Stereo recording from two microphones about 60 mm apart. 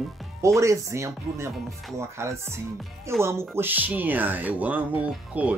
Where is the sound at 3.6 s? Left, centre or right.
Right.